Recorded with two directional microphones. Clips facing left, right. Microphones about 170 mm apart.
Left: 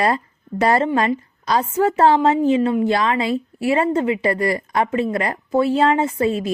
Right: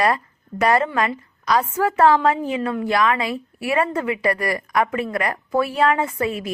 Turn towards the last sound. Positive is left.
turn(degrees=30)  # may be behind; listen again after turning